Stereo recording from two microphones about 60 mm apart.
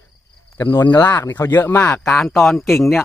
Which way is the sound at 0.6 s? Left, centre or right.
Left.